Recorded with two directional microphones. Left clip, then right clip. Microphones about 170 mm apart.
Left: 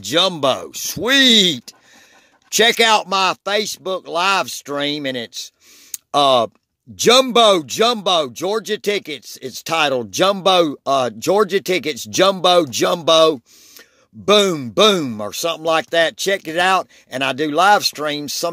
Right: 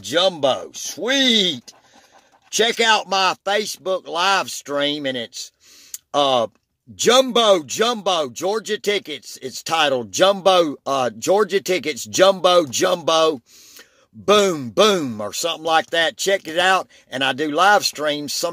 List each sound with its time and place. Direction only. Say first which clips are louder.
0.0 s speech: left 1 dB; 35° left (ahead or behind)